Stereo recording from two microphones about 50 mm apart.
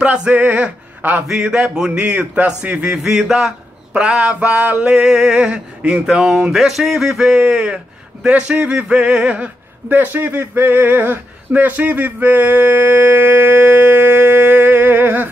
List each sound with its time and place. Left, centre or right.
0.0 s male singing: right
1.2 s speech: centre
2.0 s mantra: right
3.0 s speech: centre
4.1 s mantra: right
4.9 s speech: centre
9.8 s speech: right